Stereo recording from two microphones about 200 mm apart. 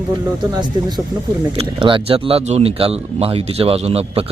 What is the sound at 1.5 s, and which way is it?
Speech, 25° right (ahead or behind).